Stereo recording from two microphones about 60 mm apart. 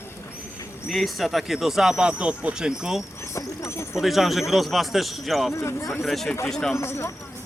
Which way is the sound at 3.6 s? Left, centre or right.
Left.